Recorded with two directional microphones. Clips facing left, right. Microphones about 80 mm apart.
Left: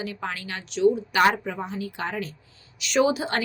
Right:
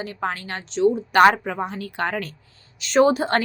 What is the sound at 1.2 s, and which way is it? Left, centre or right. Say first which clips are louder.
Speech: right 5 dB; right.